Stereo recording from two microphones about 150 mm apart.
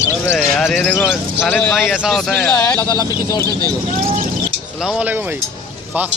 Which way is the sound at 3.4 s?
25° right (ahead or behind).